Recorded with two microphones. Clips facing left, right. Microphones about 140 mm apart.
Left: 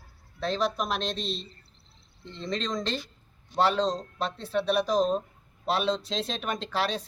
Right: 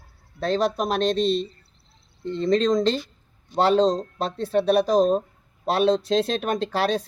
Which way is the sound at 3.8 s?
40° right (ahead or behind).